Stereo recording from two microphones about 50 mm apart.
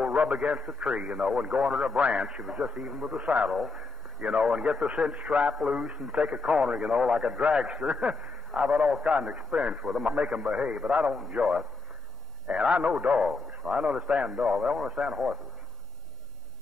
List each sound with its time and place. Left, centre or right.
0.0 s a man's voice: right